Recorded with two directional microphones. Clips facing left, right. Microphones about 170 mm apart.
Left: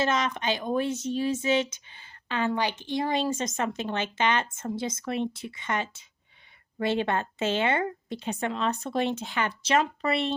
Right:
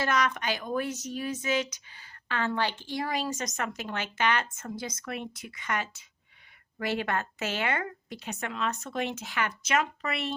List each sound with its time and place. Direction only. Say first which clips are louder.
0.0 s speech: left 2 dB; 25° left (ahead or behind)